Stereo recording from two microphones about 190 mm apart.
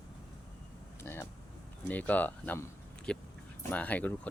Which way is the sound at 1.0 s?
10° left (ahead or behind).